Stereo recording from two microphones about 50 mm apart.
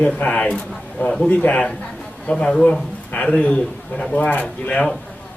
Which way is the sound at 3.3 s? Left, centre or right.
Left.